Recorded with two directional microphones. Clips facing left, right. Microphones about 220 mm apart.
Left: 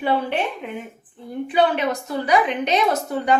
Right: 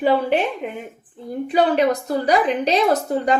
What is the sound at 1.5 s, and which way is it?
A woman's voice, 35° right (ahead or behind).